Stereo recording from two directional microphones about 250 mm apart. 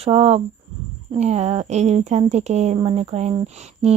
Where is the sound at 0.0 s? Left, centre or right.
Right.